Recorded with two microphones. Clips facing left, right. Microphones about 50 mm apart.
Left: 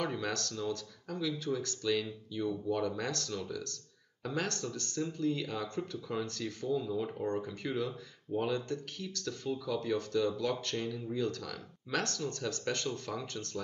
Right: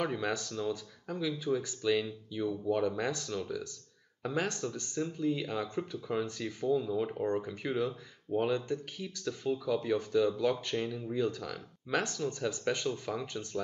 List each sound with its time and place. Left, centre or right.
0.0 s speech: centre